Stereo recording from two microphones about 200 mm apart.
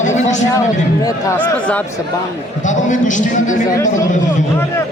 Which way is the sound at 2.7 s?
40° left (ahead or behind).